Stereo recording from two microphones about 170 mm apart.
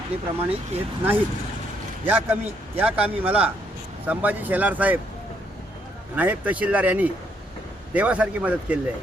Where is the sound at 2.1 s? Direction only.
10° right (ahead or behind).